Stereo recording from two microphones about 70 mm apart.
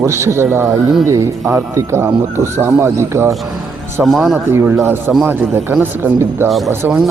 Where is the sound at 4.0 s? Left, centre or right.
Centre.